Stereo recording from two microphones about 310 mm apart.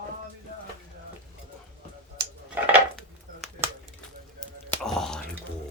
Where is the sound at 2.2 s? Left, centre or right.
Right.